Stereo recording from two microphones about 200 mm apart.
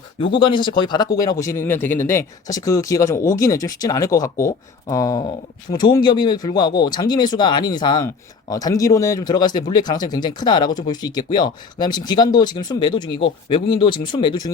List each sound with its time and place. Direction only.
0.3 s speech: 25° left (ahead or behind)